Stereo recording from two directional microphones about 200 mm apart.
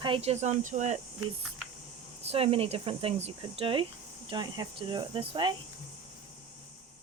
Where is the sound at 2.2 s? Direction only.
30° right (ahead or behind).